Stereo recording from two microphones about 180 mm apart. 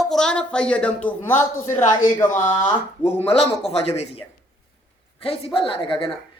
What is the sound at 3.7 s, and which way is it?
Speech, 35° left (ahead or behind).